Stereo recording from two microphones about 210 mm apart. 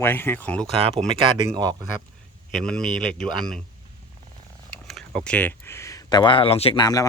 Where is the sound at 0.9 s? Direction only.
25° right (ahead or behind).